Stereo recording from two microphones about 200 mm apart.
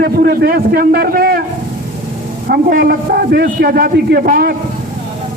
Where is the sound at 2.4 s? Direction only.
45° right (ahead or behind).